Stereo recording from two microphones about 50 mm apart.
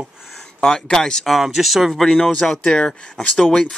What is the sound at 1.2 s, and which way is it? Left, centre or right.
Speech, centre.